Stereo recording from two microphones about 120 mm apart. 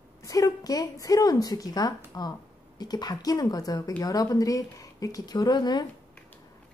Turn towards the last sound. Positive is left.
turn(degrees=35)  # may be behind; listen again after turning